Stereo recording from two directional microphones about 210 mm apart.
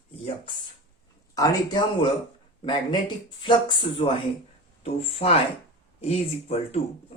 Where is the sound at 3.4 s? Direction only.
20° left (ahead or behind).